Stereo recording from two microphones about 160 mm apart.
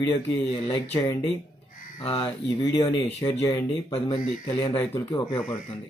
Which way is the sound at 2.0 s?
35° left (ahead or behind).